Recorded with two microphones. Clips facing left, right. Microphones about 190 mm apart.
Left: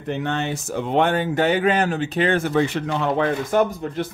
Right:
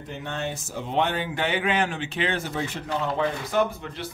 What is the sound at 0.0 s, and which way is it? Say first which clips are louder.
Speech: left 7 dB; 75° left (ahead or behind).